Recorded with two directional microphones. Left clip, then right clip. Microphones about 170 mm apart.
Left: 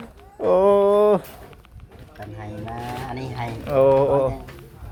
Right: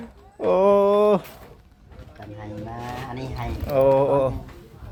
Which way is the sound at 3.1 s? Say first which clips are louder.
Left 2 dB; 15° left (ahead or behind).